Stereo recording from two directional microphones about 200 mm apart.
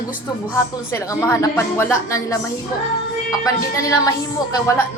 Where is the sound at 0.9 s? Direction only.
15° left (ahead or behind).